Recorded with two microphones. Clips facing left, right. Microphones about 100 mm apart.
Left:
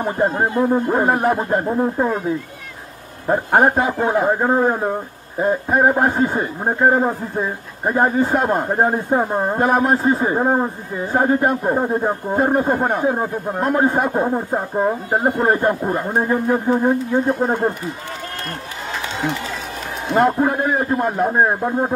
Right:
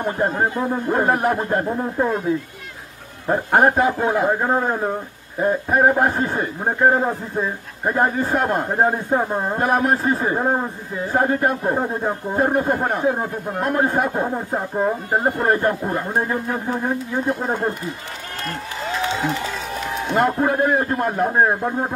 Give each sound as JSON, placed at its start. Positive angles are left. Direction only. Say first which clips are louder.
{"t": 0.0, "sound": "a man's voice", "louder": "left 2 dB", "side_deg": 15}
{"t": 3.3, "sound": "a man's voice", "louder": "left 1 dB", "side_deg": 10}
{"t": 20.1, "sound": "a man's voice", "louder": "left 3 dB", "side_deg": 5}